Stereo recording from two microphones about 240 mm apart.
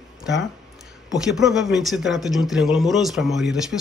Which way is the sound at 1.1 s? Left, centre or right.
Centre.